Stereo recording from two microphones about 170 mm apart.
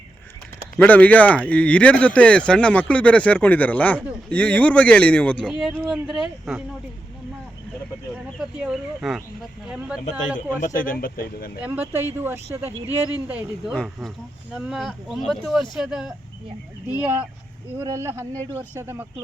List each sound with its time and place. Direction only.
0.8 s speech: 10° left (ahead or behind)
5.8 s speech: 5° right (ahead or behind)
8.4 s speech: 5° right (ahead or behind)
10.3 s a man's voice: 50° left (ahead or behind)
11.6 s speech: 10° right (ahead or behind)
12.9 s speech: 20° left (ahead or behind)
13.2 s speech: 10° right (ahead or behind)
13.7 s speech: centre (ahead or behind)